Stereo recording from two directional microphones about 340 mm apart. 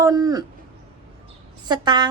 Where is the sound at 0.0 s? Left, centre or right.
Centre.